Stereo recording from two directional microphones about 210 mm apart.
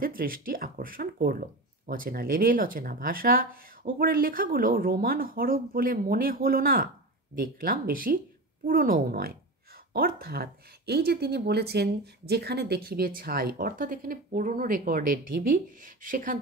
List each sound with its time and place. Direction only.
0.0 s speech: 45° right (ahead or behind)